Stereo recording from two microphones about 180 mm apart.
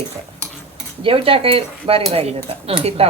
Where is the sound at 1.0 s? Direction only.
30° right (ahead or behind).